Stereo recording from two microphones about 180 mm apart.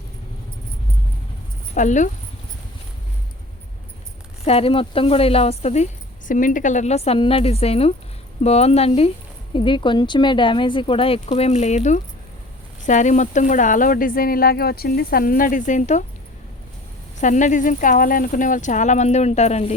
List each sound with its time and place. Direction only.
1.7 s speech: 45° left (ahead or behind)
4.4 s speech: 30° left (ahead or behind)
17.2 s speech: 45° left (ahead or behind)